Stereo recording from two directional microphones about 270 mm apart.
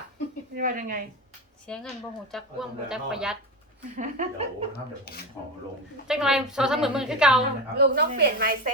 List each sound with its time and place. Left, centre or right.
0.5 s a woman's voice: right
1.6 s speech: centre
3.9 s a woman's voice: right
5.1 s speech: left
6.1 s speech: centre
7.8 s a woman's voice: right